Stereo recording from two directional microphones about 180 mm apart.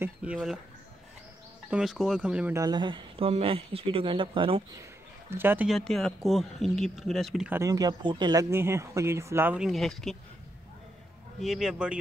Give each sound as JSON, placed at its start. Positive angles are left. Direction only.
{"t": 0.0, "sound": "speech", "side_deg": -5}
{"t": 1.7, "sound": "speech", "side_deg": -5}
{"t": 5.3, "sound": "speech", "side_deg": -10}
{"t": 5.7, "sound": "speech", "side_deg": 0}
{"t": 7.5, "sound": "speech", "side_deg": -20}
{"t": 11.3, "sound": "speech", "side_deg": 0}